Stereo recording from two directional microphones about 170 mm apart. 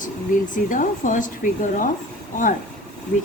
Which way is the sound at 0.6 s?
50° left (ahead or behind).